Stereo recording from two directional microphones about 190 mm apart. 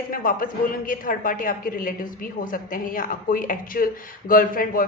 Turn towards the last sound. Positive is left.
turn(degrees=50)  # may be behind; listen again after turning